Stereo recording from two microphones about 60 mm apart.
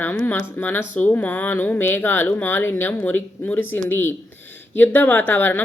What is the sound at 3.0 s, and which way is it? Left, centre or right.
A woman's voice, left.